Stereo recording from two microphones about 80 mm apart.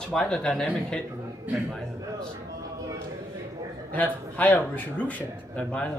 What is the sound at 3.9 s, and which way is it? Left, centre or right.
Speech, centre.